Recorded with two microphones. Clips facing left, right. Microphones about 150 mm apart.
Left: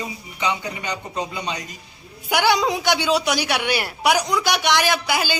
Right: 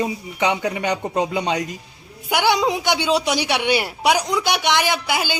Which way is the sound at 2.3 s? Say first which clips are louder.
Right 1 dB; 15° right (ahead or behind).